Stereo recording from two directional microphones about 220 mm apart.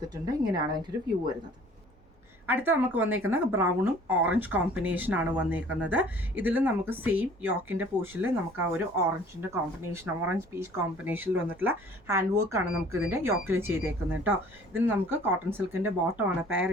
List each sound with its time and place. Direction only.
0.1 s speech: 20° right (ahead or behind)
2.5 s speech: 10° right (ahead or behind)